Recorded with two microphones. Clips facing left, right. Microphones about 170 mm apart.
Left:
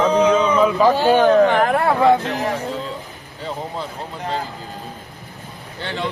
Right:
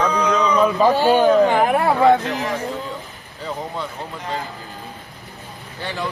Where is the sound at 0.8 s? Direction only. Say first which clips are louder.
Even; 15° right (ahead or behind).